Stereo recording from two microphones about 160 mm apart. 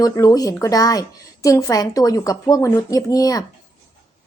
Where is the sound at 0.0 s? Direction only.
20° left (ahead or behind).